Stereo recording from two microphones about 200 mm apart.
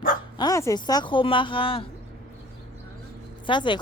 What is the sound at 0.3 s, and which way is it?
A woman's voice, 15° left (ahead or behind).